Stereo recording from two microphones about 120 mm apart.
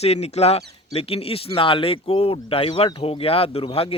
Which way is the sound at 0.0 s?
60° left (ahead or behind).